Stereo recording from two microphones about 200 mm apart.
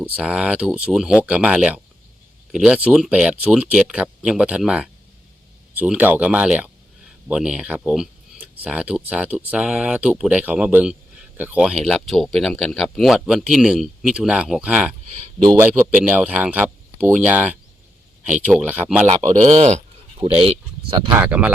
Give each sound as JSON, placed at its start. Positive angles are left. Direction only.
{"t": 0.0, "sound": "speech", "side_deg": -5}
{"t": 19.5, "sound": "a sound", "side_deg": -35}
{"t": 21.1, "sound": "speech", "side_deg": -10}